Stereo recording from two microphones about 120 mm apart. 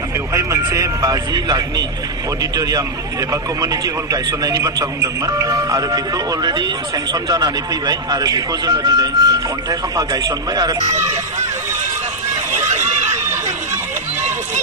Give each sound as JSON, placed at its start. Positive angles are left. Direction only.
{"t": 0.7, "sound": "speech", "side_deg": -30}